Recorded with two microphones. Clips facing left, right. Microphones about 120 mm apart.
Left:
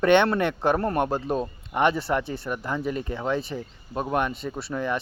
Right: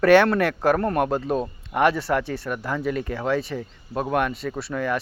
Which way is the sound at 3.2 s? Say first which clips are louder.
Right 3 dB; centre (ahead or behind).